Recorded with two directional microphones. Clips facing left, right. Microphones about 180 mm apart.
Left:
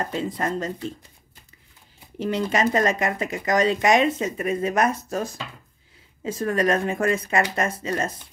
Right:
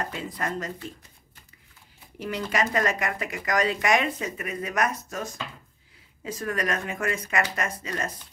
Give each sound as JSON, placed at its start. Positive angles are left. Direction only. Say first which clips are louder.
{"t": 0.1, "sound": "speech", "louder": "left 5 dB", "side_deg": 25}
{"t": 2.1, "sound": "speech", "louder": "left 5 dB", "side_deg": 25}